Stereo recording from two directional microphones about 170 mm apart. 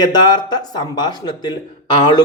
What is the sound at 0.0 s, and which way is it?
Speech, 25° left (ahead or behind).